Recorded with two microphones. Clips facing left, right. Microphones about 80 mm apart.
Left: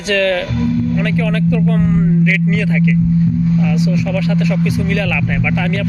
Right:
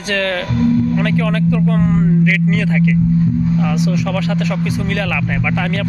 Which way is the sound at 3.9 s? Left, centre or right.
Right.